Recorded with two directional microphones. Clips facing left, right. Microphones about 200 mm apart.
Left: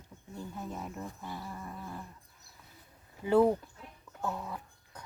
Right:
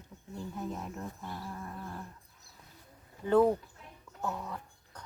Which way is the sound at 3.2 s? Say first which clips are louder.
Even; 10° left (ahead or behind).